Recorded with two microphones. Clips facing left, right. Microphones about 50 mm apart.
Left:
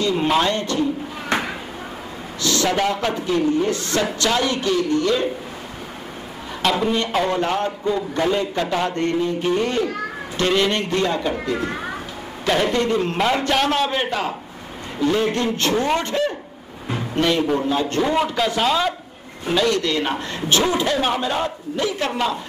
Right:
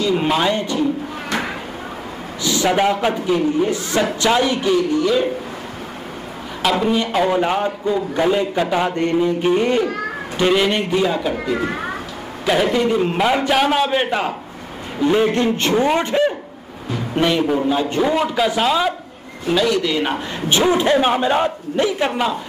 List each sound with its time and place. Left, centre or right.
0.2 s a man's voice: centre
1.3 s chopping: left
2.4 s a man's voice: centre
6.6 s a man's voice: centre; by 22.1 s right